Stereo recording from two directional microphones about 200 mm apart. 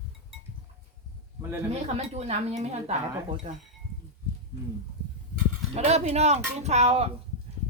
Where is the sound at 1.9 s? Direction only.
35° right (ahead or behind).